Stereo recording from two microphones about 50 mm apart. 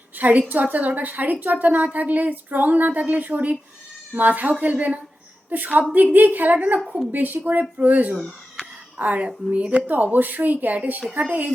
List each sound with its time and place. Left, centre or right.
0.2 s a woman's voice: right
9.8 s a woman's voice: right